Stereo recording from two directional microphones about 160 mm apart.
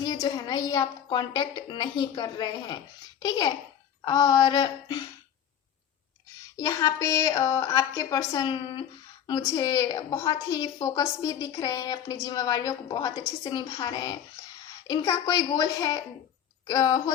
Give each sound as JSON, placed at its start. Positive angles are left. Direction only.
{"t": 0.0, "sound": "a woman's voice", "side_deg": 25}
{"t": 6.6, "sound": "a woman's voice", "side_deg": 20}